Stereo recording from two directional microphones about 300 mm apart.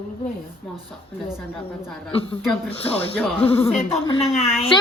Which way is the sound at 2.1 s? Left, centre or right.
Centre.